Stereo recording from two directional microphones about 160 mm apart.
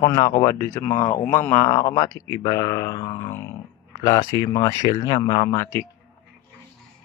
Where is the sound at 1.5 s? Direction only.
25° left (ahead or behind).